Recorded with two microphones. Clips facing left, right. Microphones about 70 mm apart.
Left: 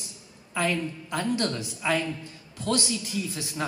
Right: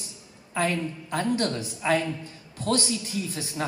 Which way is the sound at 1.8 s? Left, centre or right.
Right.